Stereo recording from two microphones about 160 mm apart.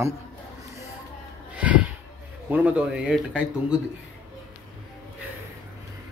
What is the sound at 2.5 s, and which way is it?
Speech, 10° right (ahead or behind).